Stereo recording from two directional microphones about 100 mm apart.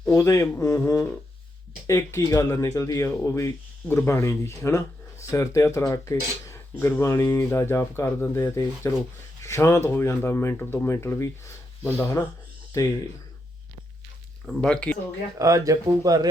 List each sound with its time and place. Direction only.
0.1 s speech: 30° left (ahead or behind)
14.4 s speech: 5° left (ahead or behind)
15.4 s speech: 35° right (ahead or behind)